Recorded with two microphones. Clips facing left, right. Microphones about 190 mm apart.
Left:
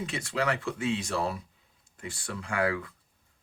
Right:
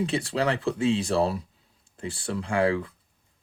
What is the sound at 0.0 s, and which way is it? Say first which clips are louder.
Speech: right 5 dB; 30° right (ahead or behind).